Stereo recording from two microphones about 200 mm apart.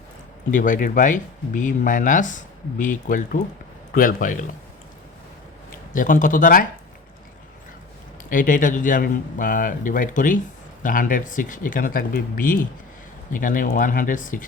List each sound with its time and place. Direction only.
0.5 s speech: 40° left (ahead or behind)
5.7 s speech: 40° left (ahead or behind)
8.3 s speech: 45° left (ahead or behind)